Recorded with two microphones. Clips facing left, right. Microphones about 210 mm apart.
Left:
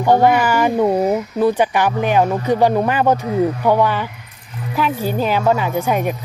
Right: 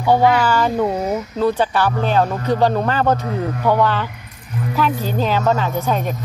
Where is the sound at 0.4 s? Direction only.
15° left (ahead or behind).